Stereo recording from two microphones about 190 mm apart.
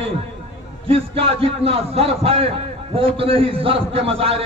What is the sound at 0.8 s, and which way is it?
A man's voice, 30° right (ahead or behind).